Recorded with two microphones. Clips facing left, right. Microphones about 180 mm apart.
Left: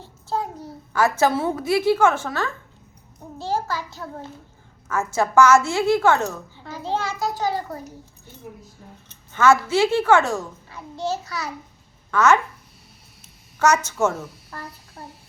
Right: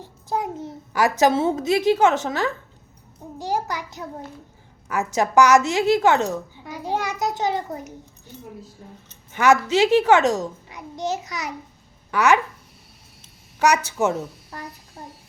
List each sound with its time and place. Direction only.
0.0 s a child's voice: 15° right (ahead or behind)
9.3 s a woman's voice: 15° right (ahead or behind)
13.6 s a woman's voice: 15° right (ahead or behind)